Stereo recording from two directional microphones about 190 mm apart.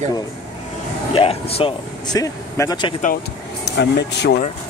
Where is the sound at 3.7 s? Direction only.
60° left (ahead or behind).